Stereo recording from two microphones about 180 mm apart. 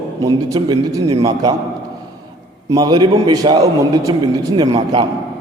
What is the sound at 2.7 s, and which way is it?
A man's voice, 20° right (ahead or behind).